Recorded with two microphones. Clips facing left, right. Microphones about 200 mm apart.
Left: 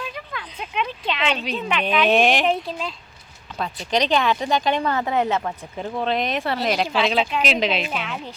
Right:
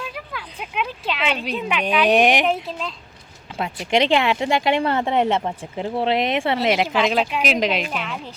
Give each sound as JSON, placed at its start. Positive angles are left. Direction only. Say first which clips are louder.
{"t": 0.0, "sound": "speech", "louder": "even", "side_deg": -5}
{"t": 2.5, "sound": "speech", "louder": "even", "side_deg": 0}
{"t": 3.6, "sound": "a woman's voice", "louder": "right 3 dB", "side_deg": -25}
{"t": 7.0, "sound": "speech", "louder": "right 1 dB", "side_deg": -10}